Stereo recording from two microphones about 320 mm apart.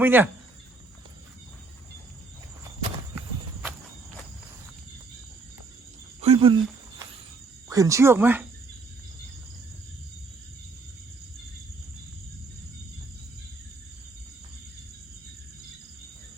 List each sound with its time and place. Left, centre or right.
0.0 s speech: centre
3.2 s horse: centre
6.2 s a sound: centre
7.7 s speech: centre